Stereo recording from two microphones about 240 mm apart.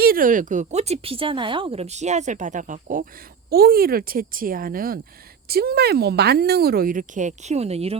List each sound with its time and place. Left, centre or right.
0.0 s speech: right